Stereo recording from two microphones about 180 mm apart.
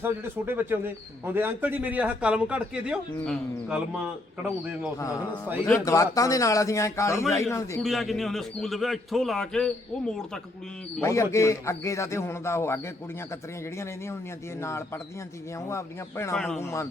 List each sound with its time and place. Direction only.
0.0 s a man's voice: 10° right (ahead or behind)
5.7 s a man's voice: 15° left (ahead or behind)
7.8 s a man's voice: centre (ahead or behind)
11.0 s a man's voice: 15° left (ahead or behind)
14.6 s a man's voice: 15° left (ahead or behind)
16.3 s a man's voice: 5° left (ahead or behind)